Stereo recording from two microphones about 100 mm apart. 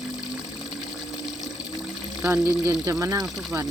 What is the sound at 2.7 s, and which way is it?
Speech, 40° right (ahead or behind).